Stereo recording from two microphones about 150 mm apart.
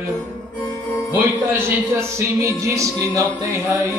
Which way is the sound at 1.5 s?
15° right (ahead or behind).